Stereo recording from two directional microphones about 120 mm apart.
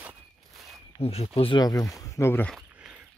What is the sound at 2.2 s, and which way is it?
Speech, 20° left (ahead or behind).